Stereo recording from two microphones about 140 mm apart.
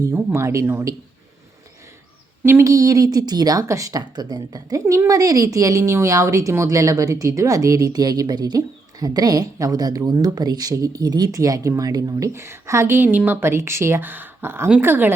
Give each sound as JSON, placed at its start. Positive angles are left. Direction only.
{"t": 0.0, "sound": "speech", "side_deg": -15}
{"t": 2.4, "sound": "speech", "side_deg": -15}